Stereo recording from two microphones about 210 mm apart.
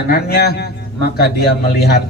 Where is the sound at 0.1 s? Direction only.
50° left (ahead or behind).